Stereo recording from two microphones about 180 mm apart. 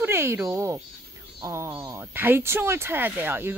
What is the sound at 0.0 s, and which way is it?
Speech, 15° right (ahead or behind).